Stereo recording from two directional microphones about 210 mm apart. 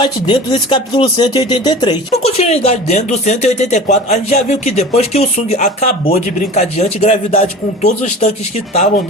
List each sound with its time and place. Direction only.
0.0 s speech: 20° left (ahead or behind)